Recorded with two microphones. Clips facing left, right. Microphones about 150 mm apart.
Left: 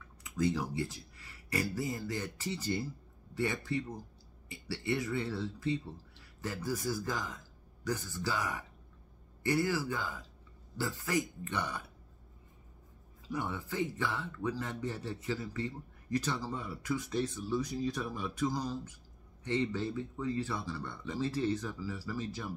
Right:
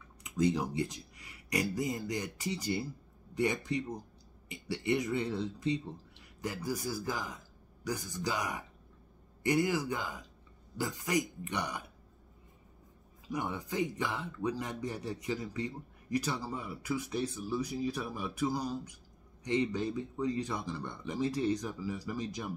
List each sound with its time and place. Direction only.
0.2 s a man's voice: 20° right (ahead or behind)
13.3 s a man's voice: 15° right (ahead or behind)